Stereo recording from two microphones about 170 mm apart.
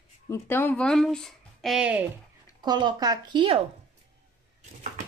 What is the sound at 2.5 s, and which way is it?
Speech, 25° right (ahead or behind).